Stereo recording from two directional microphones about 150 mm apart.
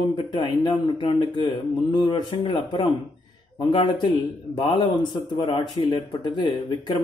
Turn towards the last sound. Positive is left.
turn(degrees=30)  # may be behind; listen again after turning